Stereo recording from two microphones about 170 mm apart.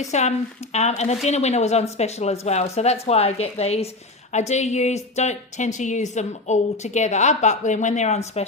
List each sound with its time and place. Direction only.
0.1 s a woman's voice: 40° left (ahead or behind)